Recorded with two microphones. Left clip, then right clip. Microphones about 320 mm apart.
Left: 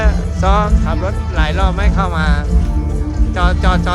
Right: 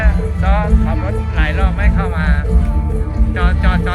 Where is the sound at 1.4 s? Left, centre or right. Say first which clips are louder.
Left 3 dB; centre.